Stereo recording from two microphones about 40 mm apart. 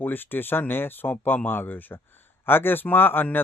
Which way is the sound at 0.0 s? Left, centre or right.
Left.